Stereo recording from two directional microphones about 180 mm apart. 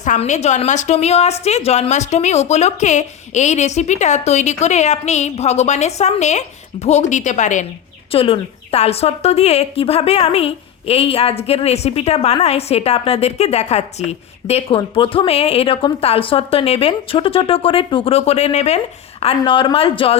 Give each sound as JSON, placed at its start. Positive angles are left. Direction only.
{"t": 0.0, "sound": "a woman's voice", "side_deg": 40}